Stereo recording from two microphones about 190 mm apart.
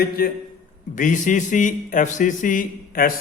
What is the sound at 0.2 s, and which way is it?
A man's voice, 50° left (ahead or behind).